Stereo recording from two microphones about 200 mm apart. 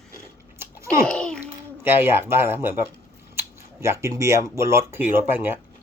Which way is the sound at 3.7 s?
15° right (ahead or behind).